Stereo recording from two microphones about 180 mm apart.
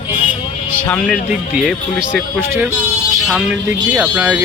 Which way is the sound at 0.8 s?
10° left (ahead or behind).